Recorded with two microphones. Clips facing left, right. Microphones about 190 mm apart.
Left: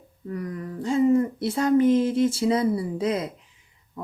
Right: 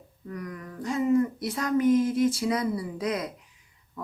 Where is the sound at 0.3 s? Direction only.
30° left (ahead or behind).